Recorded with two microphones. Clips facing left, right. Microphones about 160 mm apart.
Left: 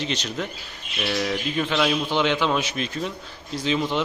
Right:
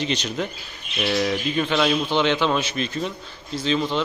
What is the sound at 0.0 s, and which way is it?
A man's voice, centre (ahead or behind).